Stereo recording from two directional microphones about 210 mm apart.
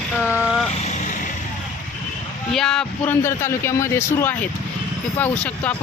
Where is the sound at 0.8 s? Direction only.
35° left (ahead or behind).